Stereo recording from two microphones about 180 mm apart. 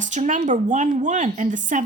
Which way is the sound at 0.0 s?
40° right (ahead or behind).